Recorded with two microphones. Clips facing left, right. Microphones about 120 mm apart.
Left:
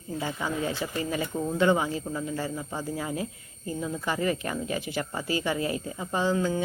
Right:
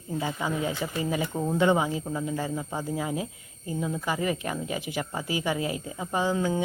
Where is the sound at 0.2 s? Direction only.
10° right (ahead or behind).